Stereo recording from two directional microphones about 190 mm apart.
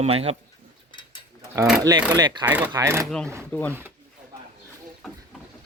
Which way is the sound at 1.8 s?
20° right (ahead or behind).